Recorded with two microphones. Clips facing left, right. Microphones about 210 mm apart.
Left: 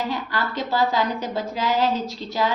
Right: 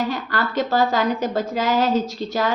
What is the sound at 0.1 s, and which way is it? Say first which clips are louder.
A woman's voice: right 3 dB; 45° right (ahead or behind).